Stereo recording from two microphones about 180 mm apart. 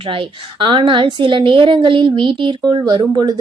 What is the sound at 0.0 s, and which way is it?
A woman's voice, 30° right (ahead or behind).